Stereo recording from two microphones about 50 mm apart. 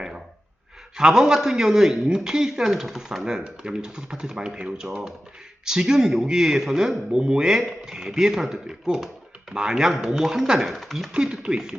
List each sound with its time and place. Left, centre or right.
0.9 s speech: centre
3.2 s speech: centre
10.7 s speech: centre
11.1 s speech: centre